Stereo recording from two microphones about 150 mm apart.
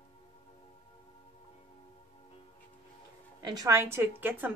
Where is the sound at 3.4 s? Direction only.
25° right (ahead or behind).